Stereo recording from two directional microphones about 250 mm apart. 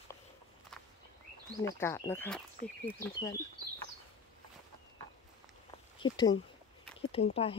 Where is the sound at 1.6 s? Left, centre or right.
Centre.